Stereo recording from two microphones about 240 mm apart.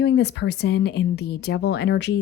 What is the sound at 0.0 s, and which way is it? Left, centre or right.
Speech, left.